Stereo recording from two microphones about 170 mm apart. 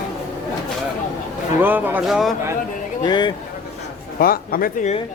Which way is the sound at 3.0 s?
25° left (ahead or behind).